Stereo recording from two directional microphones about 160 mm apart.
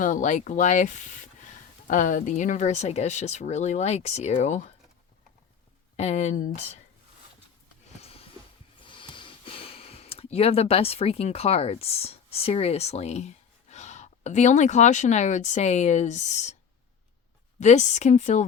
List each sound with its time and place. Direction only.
0.0 s speech: 50° left (ahead or behind)
6.0 s speech: 40° left (ahead or behind)
8.8 s speech: 30° left (ahead or behind); by 16.6 s 45° left (ahead or behind)
17.6 s speech: 45° left (ahead or behind)